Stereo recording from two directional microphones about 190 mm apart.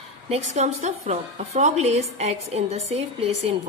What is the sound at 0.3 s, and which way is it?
A woman's voice, 35° right (ahead or behind).